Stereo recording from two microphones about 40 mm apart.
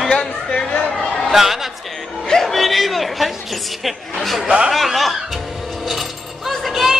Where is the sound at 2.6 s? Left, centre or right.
Centre.